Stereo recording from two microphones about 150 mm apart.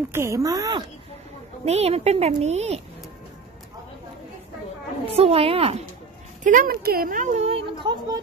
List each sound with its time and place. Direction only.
0.1 s speech: 20° right (ahead or behind)
1.6 s speech: 45° right (ahead or behind)
5.0 s a woman's voice: 40° right (ahead or behind)
6.4 s speech: 65° right (ahead or behind); by 8.2 s 30° right (ahead or behind)